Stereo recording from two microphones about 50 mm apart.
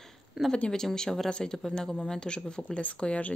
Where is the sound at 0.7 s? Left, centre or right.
Centre.